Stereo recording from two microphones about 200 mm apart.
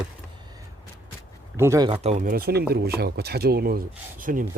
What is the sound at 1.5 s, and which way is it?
Speech, 15° right (ahead or behind).